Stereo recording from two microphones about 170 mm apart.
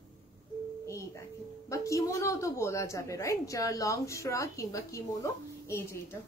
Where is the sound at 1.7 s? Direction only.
20° left (ahead or behind).